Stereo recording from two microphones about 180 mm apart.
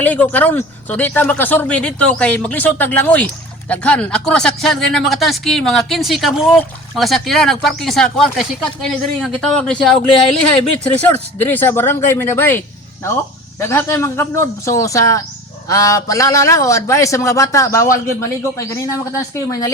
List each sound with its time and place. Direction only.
0.0 s speech: 10° left (ahead or behind)
10.1 s speech: 30° left (ahead or behind)
10.9 s speech: 10° left (ahead or behind)